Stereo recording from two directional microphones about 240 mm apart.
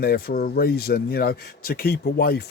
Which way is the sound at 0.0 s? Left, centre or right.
Left.